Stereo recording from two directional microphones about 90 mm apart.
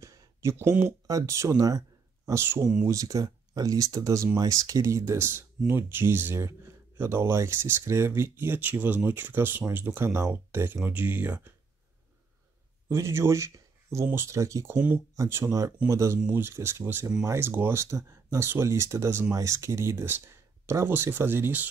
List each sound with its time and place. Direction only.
0.0 s a sound: 30° right (ahead or behind)
1.0 s speech: 35° right (ahead or behind)
2.9 s speech: 40° right (ahead or behind); by 11.5 s 20° right (ahead or behind)
12.9 s speech: 30° right (ahead or behind)
16.2 s speech: 20° right (ahead or behind)